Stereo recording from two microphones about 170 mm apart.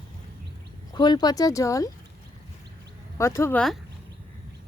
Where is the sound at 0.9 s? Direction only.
25° left (ahead or behind).